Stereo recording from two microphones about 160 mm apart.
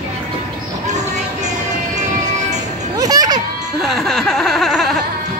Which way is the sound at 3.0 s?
25° right (ahead or behind).